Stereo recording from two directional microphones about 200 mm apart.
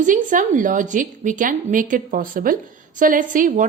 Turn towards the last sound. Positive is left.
turn(degrees=-40)  # may be behind; listen again after turning